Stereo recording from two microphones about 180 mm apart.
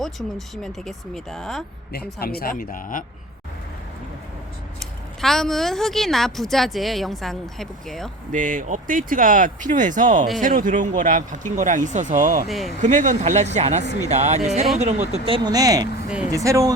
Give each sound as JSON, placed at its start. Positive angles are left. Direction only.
{"t": 0.0, "sound": "speech", "side_deg": 0}
{"t": 2.2, "sound": "speech", "side_deg": 55}
{"t": 5.2, "sound": "speech", "side_deg": 0}
{"t": 8.3, "sound": "speech", "side_deg": -45}
{"t": 12.5, "sound": "speech", "side_deg": 0}
{"t": 12.8, "sound": "speech", "side_deg": -45}
{"t": 15.4, "sound": "speech", "side_deg": -20}